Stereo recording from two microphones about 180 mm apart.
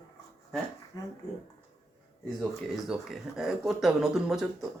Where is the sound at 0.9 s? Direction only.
20° left (ahead or behind).